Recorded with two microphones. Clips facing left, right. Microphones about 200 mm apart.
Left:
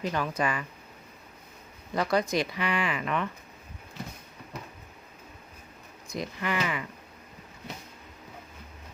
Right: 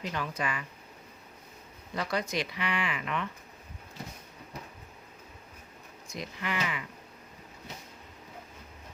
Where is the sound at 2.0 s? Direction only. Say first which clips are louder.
Left 6 dB; 45° left (ahead or behind).